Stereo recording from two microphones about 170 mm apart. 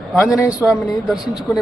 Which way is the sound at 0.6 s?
Centre (ahead or behind).